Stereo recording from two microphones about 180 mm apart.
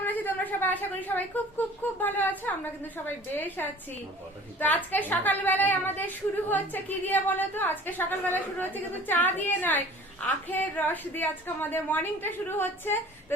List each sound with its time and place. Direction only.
0.0 s a woman's voice: 10° left (ahead or behind)